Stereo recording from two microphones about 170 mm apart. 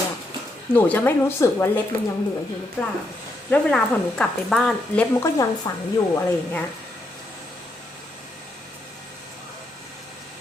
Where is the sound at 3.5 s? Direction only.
5° left (ahead or behind).